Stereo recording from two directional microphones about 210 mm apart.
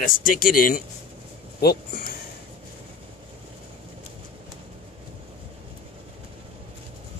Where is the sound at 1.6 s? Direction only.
45° left (ahead or behind).